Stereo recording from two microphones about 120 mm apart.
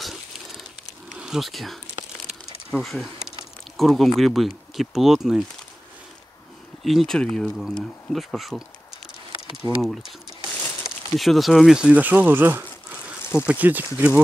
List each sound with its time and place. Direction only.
1.0 s insect: 5° right (ahead or behind)
2.7 s speech: centre (ahead or behind)
6.8 s speech: centre (ahead or behind)
9.8 s speech: centre (ahead or behind)
11.1 s speech: centre (ahead or behind)
13.2 s a sound: 20° left (ahead or behind)
13.5 s speech: 15° right (ahead or behind)